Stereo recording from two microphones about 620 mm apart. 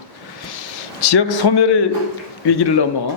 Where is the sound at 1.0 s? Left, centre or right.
Left.